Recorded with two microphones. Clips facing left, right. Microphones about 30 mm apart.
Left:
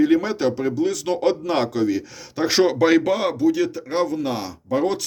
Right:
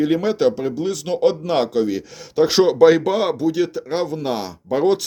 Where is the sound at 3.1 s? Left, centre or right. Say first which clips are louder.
Even; right.